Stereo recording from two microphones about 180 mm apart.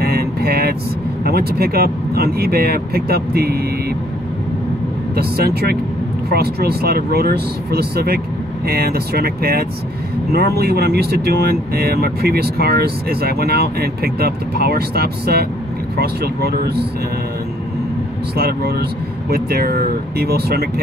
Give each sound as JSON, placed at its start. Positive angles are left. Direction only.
{"t": 0.0, "sound": "vehicle", "side_deg": -60}
{"t": 1.2, "sound": "speech", "side_deg": -60}
{"t": 5.1, "sound": "speech", "side_deg": -60}
{"t": 18.3, "sound": "speech", "side_deg": -60}